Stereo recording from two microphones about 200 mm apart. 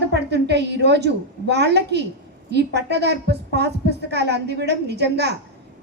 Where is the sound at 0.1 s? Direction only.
55° right (ahead or behind).